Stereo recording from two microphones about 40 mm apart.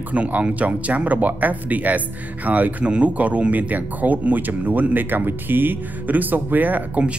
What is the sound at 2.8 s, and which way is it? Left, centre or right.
Speech, right.